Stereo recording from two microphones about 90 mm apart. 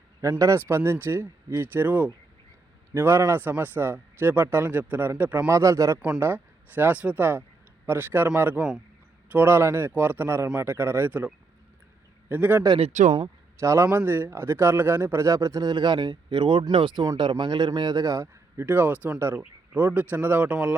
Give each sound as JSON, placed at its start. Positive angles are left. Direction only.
{"t": 0.2, "sound": "a man's voice", "side_deg": -35}
{"t": 5.5, "sound": "a man's voice", "side_deg": -35}
{"t": 12.3, "sound": "a man's voice", "side_deg": -20}
{"t": 15.7, "sound": "a man's voice", "side_deg": -55}